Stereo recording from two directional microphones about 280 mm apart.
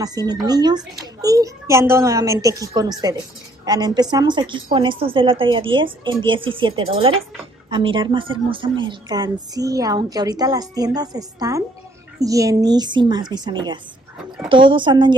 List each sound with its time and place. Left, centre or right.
0.0 s a woman's voice: centre